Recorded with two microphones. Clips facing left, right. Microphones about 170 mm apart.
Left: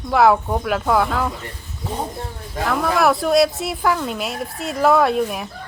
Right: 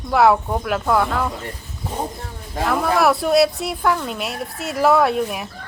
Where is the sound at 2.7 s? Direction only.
Centre (ahead or behind).